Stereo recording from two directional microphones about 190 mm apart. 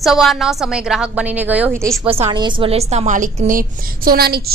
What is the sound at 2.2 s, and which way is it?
A woman's voice, 25° right (ahead or behind).